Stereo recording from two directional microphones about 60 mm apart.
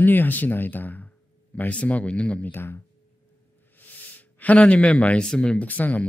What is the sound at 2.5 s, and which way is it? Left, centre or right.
Speech, left.